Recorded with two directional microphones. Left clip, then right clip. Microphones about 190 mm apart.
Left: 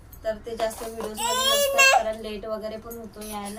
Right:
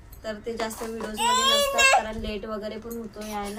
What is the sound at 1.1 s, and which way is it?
Speech, centre (ahead or behind).